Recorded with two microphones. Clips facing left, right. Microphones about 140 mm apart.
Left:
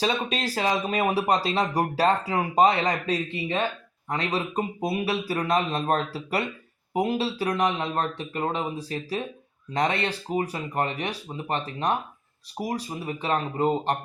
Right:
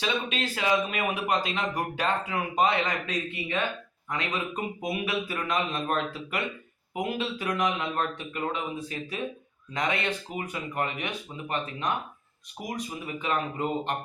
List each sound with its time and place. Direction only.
0.0 s speech: 35° left (ahead or behind)